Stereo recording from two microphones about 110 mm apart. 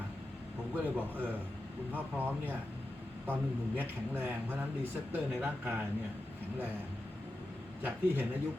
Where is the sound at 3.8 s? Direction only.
15° right (ahead or behind).